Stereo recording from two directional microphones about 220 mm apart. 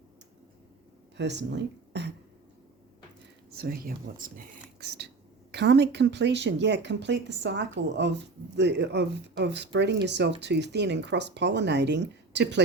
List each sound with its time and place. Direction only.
1.1 s speech: 50° right (ahead or behind)
3.5 s speech: 45° right (ahead or behind)
4.8 s a sound: 45° right (ahead or behind)
5.5 s speech: 50° right (ahead or behind)